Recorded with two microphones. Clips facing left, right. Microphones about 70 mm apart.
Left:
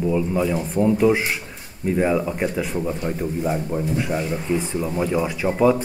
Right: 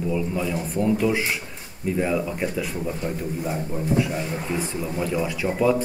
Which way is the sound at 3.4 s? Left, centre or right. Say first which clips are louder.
Left 5 dB; left.